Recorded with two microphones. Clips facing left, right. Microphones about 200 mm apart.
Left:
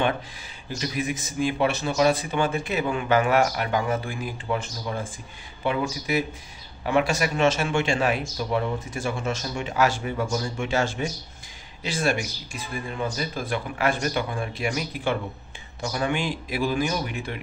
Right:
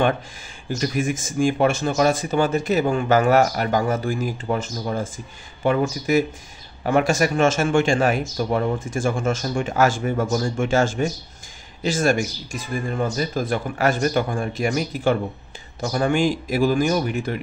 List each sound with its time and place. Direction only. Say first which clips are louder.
0.7 s speech: right 5 dB; 45° right (ahead or behind)